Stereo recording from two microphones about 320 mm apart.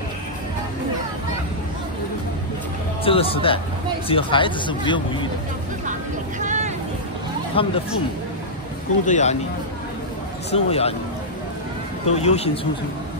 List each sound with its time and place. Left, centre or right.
3.0 s speech: centre
6.4 s vehicle: right
7.6 s speech: centre
9.0 s speech: left
10.5 s speech: centre
12.1 s speech: centre